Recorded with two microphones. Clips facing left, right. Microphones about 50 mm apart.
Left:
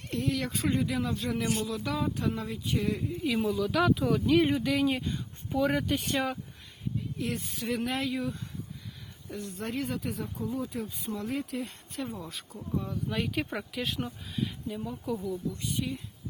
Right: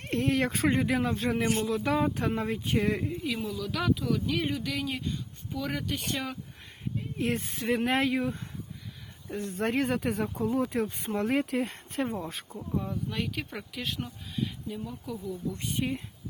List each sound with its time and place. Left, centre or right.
0.0 s speech: right
3.2 s speech: centre
7.2 s speech: right
12.5 s speech: centre
13.1 s speech: centre
15.5 s speech: right